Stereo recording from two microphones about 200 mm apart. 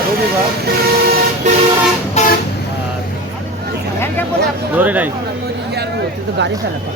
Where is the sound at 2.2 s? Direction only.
35° left (ahead or behind).